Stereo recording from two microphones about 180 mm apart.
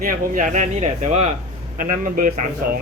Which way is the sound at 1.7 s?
50° right (ahead or behind).